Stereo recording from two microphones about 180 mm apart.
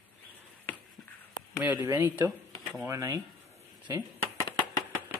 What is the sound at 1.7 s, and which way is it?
Speech, 15° right (ahead or behind).